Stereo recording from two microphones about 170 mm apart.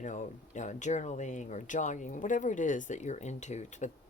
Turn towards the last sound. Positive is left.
turn(degrees=45)  # may be behind; listen again after turning